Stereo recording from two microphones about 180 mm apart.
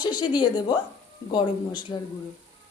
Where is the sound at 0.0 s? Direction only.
25° left (ahead or behind).